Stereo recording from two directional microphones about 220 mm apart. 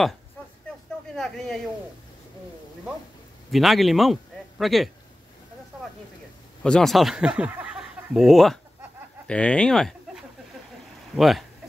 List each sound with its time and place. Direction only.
0.7 s a sound: centre (ahead or behind)
3.5 s a man's voice: centre (ahead or behind)
6.6 s speech: 5° left (ahead or behind)